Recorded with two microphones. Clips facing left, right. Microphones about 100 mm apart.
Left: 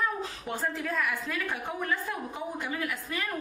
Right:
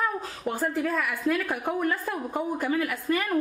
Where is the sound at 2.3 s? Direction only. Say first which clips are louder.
Right 8 dB; 45° right (ahead or behind).